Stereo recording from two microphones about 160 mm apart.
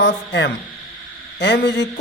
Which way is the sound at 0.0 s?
90° left.